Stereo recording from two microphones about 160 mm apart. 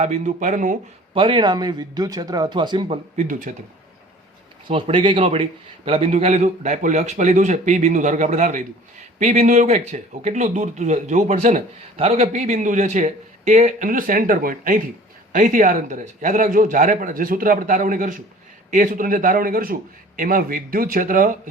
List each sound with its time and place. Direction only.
0.0 s a man's voice: 50° right (ahead or behind)
1.1 s speech: 30° right (ahead or behind)
3.2 s a man's voice: 55° right (ahead or behind)
4.7 s a man's voice: 35° right (ahead or behind); by 11.6 s 50° right (ahead or behind)
11.9 s a man's voice: 40° right (ahead or behind); by 21.5 s 60° right (ahead or behind)